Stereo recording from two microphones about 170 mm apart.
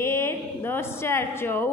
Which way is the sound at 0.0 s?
15° left (ahead or behind).